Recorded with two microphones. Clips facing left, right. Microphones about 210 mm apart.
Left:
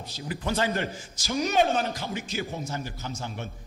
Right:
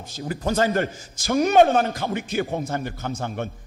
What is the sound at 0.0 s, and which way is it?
A man's voice, 45° right (ahead or behind).